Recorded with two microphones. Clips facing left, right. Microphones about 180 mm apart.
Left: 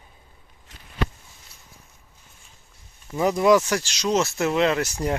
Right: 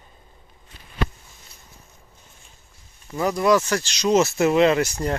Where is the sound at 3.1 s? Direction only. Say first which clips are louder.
Left 1 dB; 15° left (ahead or behind); by 5.0 s centre (ahead or behind).